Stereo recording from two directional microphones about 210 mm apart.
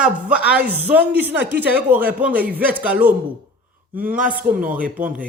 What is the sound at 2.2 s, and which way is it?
Speech, 5° right (ahead or behind).